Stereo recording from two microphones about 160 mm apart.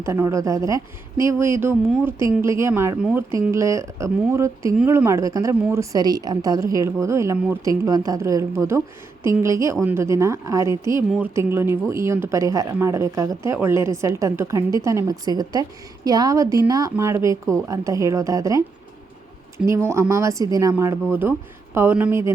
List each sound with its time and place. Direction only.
0.0 s a woman's voice: 15° right (ahead or behind)
19.6 s speech: 15° right (ahead or behind)